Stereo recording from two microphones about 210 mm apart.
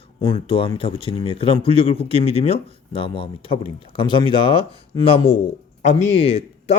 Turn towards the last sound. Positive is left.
turn(degrees=30)  # may be behind; listen again after turning